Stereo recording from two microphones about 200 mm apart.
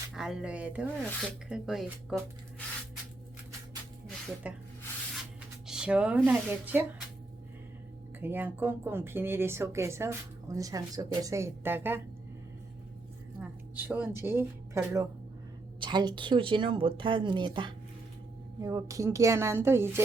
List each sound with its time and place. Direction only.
0.1 s speech: centre (ahead or behind)
4.4 s speech: 5° right (ahead or behind)
5.6 s speech: 5° right (ahead or behind)
8.2 s speech: 10° right (ahead or behind)
13.4 s a woman's voice: 10° right (ahead or behind)